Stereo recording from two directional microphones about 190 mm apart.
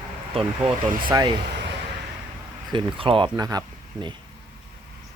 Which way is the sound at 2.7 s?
25° right (ahead or behind).